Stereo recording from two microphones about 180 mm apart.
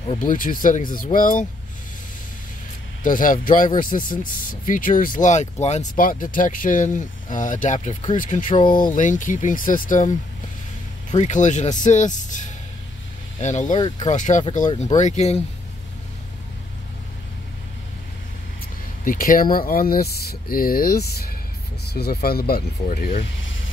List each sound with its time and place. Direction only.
0.2 s speech: 50° left (ahead or behind)
3.0 s speech: 50° left (ahead or behind)
13.7 s speech: 25° left (ahead or behind)
14.0 s speech: 40° left (ahead or behind)
19.0 s speech: 50° left (ahead or behind)
22.8 s speech: 45° left (ahead or behind)
23.3 s vehicle: 90° left